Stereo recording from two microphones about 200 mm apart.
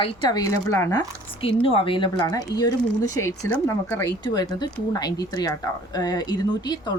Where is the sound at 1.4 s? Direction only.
30° left (ahead or behind).